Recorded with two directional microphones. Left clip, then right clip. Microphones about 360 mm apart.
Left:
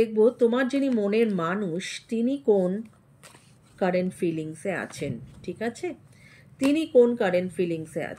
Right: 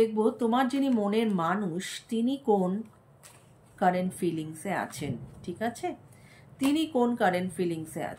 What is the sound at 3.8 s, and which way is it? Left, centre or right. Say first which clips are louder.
Speech: left 1 dB; centre.